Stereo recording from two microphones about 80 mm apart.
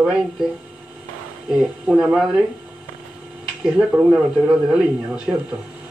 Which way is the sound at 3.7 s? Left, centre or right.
Centre.